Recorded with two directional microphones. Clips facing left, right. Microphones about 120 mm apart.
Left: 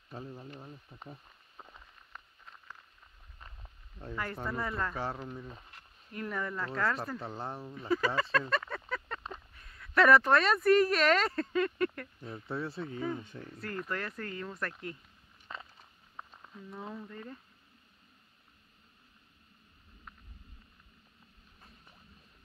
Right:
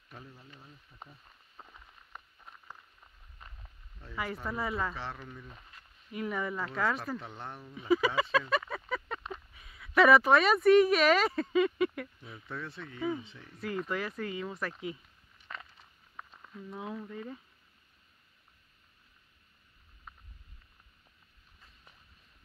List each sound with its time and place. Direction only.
0.3 s speech: 45° left (ahead or behind)
2.1 s a sound: 15° right (ahead or behind)
4.1 s speech: 5° right (ahead or behind)
4.9 s speech: 40° left (ahead or behind)
6.1 s speech: 5° right (ahead or behind)
7.2 s speech: 35° left (ahead or behind)
7.9 s a sound: centre (ahead or behind)
9.3 s speech: 5° right (ahead or behind)
12.4 s speech: 35° left (ahead or behind)
13.2 s speech: 45° left (ahead or behind)
13.6 s speech: 5° right (ahead or behind)
15.5 s a sound: 25° left (ahead or behind)
16.7 s speech: 5° right (ahead or behind)